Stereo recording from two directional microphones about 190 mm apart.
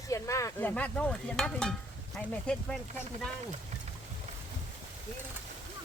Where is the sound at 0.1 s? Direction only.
15° left (ahead or behind).